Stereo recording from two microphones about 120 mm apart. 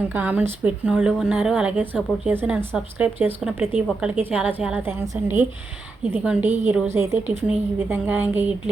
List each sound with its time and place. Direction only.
0.0 s speech: 15° right (ahead or behind)
6.9 s a woman's voice: 20° right (ahead or behind)